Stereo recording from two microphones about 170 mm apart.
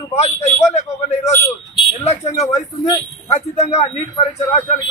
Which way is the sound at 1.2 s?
15° left (ahead or behind).